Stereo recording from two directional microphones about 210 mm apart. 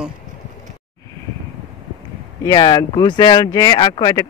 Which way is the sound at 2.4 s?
20° left (ahead or behind).